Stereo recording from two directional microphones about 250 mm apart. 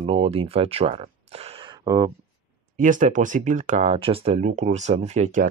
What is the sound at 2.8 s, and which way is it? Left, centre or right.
Speech, right.